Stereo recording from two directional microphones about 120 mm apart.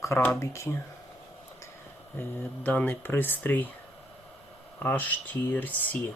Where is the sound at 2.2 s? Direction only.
15° left (ahead or behind).